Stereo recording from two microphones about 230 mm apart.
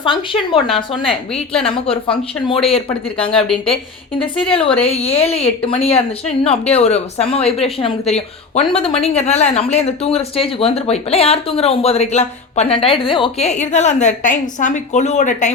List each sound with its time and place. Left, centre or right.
0.0 s a woman's voice: left
1.0 s a woman's voice: centre
1.6 s a woman's voice: left
4.4 s a woman's voice: left